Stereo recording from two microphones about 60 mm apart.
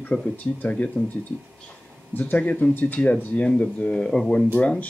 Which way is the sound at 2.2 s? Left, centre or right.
Left.